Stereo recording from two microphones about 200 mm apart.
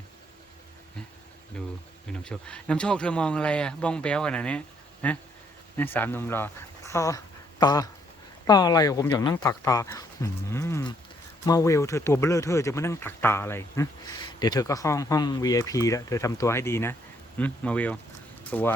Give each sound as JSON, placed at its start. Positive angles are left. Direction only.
{"t": 2.0, "sound": "speech", "side_deg": 5}